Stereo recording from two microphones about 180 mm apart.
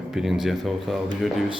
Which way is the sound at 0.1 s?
Centre (ahead or behind).